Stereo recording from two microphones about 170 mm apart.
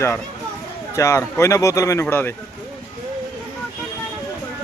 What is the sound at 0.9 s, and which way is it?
Speech, 20° left (ahead or behind).